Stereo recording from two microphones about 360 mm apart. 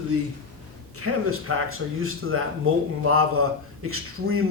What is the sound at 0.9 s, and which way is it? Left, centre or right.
A man's voice, right.